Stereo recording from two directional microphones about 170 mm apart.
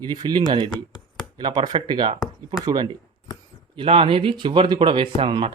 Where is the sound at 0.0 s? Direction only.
25° right (ahead or behind).